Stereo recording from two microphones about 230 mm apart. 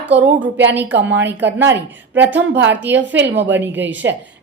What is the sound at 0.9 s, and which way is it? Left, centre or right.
Speech, right.